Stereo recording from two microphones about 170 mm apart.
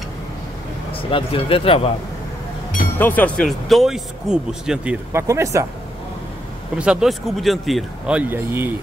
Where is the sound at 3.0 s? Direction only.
10° left (ahead or behind).